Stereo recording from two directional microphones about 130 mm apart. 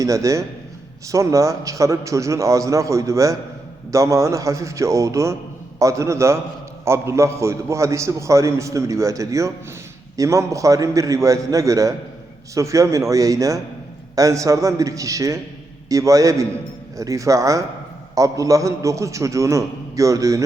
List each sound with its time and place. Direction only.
0.0 s a man's voice: 25° right (ahead or behind)